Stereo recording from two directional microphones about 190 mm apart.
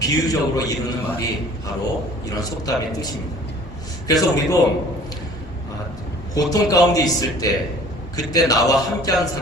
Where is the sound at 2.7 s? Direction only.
20° left (ahead or behind).